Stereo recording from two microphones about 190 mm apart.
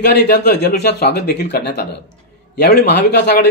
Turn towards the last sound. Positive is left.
turn(degrees=60)  # may be behind; listen again after turning